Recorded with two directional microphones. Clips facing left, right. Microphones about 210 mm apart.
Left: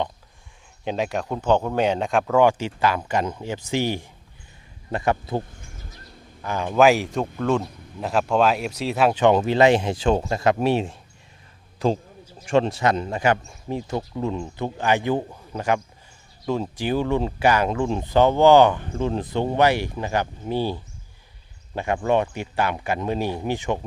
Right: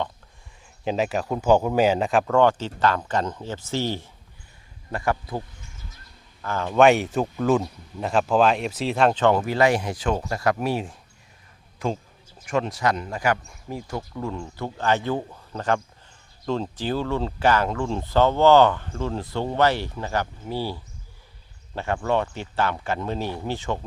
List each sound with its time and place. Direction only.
0.9 s speech: centre (ahead or behind); by 5.4 s 25° left (ahead or behind)
5.4 s bird: 50° left (ahead or behind)
6.4 s speech: 15° left (ahead or behind)
6.7 s speech: centre (ahead or behind); by 10.9 s 25° left (ahead or behind)
12.5 s speech: 30° left (ahead or behind)
21.8 s speech: 15° left (ahead or behind)